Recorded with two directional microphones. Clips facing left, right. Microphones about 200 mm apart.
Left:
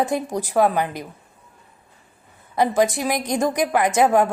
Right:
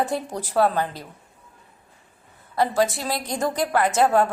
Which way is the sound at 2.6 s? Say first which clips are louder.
Left 3 dB; 15° left (ahead or behind).